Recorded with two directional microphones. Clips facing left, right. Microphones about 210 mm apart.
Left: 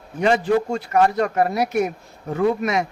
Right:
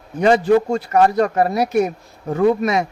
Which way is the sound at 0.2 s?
40° right (ahead or behind).